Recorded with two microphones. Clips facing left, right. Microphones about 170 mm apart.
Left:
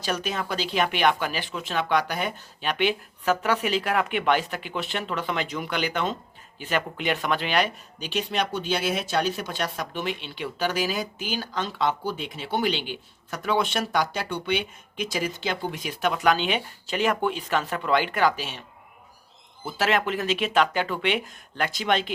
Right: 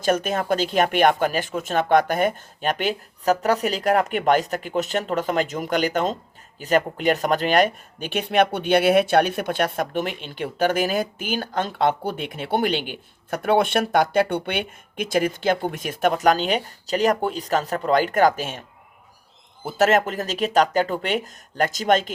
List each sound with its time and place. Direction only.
0.0 s speech: 50° right (ahead or behind)
19.6 s speech: 45° right (ahead or behind)